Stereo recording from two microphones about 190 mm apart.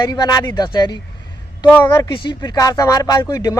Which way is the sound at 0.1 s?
20° left (ahead or behind).